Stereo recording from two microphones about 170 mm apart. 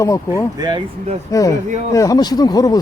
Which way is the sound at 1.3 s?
20° left (ahead or behind).